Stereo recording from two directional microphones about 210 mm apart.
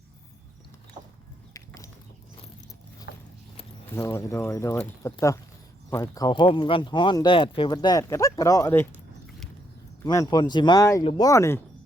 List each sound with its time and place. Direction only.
1.5 s a sound: 15° left (ahead or behind)
3.1 s clip-clop: 55° left (ahead or behind)
3.9 s speech: 15° left (ahead or behind)
10.0 s speech: 15° left (ahead or behind)